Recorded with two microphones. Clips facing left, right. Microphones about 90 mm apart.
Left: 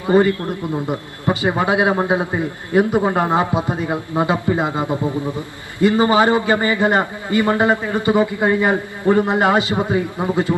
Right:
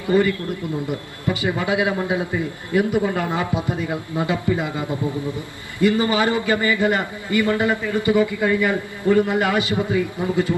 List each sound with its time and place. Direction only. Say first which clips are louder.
0.0 s a man's voice: left 4 dB; 30° left (ahead or behind)